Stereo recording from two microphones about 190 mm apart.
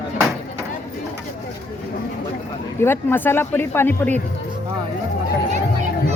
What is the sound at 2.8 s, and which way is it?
Speech, 10° left (ahead or behind).